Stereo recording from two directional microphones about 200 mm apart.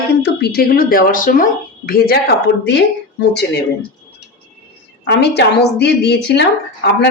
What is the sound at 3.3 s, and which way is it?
Speech, 55° left (ahead or behind).